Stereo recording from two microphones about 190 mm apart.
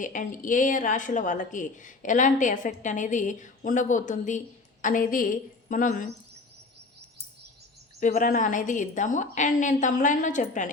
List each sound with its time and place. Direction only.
0.0 s a woman's voice: 45° left (ahead or behind)
7.9 s a woman's voice: 45° left (ahead or behind)